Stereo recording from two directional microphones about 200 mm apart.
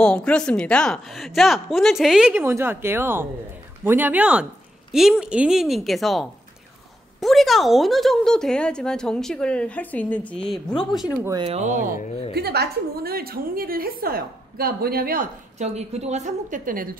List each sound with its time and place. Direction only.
0.0 s a woman's voice: 5° left (ahead or behind)
11.2 s speech: 20° right (ahead or behind)
11.5 s a woman's voice: 35° right (ahead or behind)
12.4 s a woman's voice: 55° right (ahead or behind)
15.6 s a woman's voice: 35° right (ahead or behind)